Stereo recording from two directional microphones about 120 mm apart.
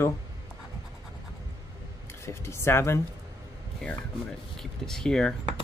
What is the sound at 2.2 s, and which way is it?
Speech, 20° left (ahead or behind).